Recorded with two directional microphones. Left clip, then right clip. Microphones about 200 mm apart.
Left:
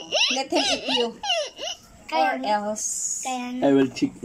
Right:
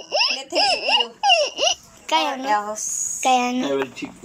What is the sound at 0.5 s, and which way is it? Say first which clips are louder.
Baby laughter: right 6 dB; 5° right (ahead or behind).